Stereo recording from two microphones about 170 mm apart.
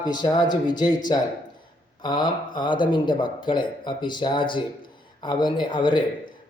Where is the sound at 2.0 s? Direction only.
25° left (ahead or behind).